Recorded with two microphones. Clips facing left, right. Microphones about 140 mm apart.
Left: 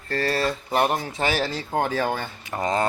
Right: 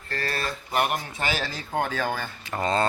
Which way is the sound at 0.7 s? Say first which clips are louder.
Left 2 dB; 30° left (ahead or behind).